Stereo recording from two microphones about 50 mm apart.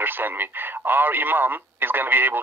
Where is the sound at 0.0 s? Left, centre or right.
Right.